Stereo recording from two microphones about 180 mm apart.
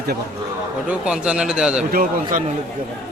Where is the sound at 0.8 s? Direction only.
5° right (ahead or behind).